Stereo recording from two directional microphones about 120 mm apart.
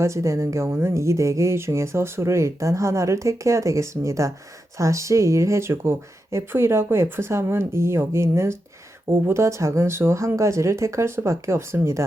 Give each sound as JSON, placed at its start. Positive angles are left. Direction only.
{"t": 0.0, "sound": "speech", "side_deg": -25}